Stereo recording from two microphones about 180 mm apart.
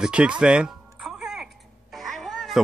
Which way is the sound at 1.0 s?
5° right (ahead or behind).